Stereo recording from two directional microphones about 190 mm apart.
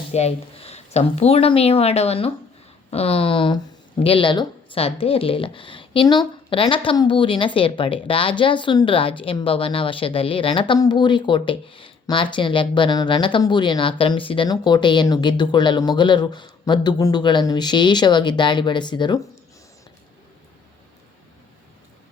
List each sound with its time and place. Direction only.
0.1 s speech: 35° left (ahead or behind)